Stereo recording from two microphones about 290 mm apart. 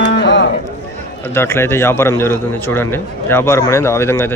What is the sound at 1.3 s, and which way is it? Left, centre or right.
A man's voice, centre.